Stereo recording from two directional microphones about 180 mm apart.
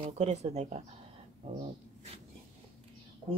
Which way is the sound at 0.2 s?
35° right (ahead or behind).